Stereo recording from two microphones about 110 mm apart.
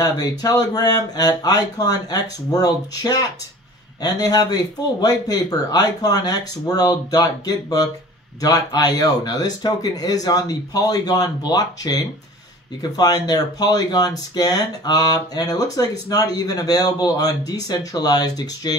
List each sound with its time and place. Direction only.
0.0 s speech: 35° left (ahead or behind)